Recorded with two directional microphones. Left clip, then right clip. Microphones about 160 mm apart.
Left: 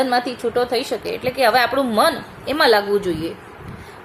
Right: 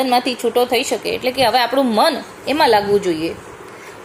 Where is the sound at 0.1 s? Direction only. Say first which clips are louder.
Right 3 dB; 10° right (ahead or behind).